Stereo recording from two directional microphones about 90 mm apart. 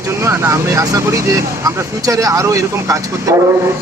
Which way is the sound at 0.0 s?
30° right (ahead or behind).